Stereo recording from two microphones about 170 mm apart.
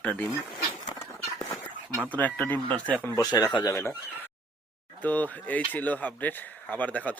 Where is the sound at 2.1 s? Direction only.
10° left (ahead or behind).